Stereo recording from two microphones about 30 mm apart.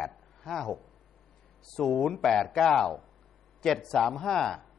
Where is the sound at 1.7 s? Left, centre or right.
Centre.